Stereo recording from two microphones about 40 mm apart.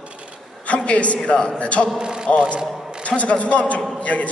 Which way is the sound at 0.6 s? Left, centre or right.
Left.